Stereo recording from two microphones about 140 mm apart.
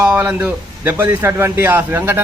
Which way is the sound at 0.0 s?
10° right (ahead or behind).